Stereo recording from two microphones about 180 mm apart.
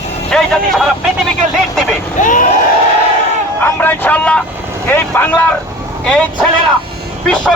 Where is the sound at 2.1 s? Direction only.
45° left (ahead or behind).